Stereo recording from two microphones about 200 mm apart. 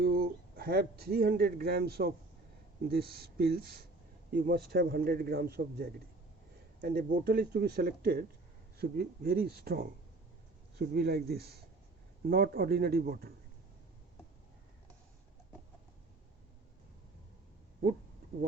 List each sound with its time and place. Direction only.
0.0 s a man's voice: 50° right (ahead or behind)